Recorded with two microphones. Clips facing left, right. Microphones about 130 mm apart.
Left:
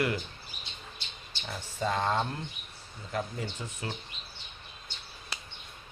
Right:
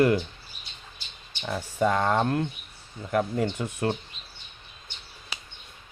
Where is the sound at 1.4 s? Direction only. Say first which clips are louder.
Right 8 dB; 60° right (ahead or behind).